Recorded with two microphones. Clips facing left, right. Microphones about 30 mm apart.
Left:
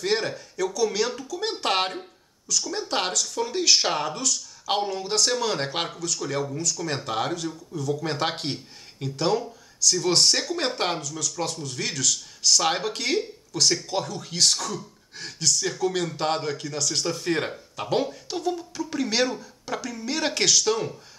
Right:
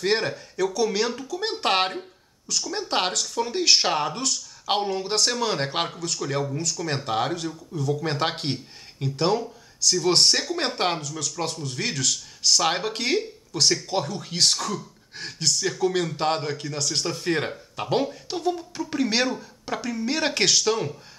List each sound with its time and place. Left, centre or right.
0.0 s speech: centre
11.3 s speech: centre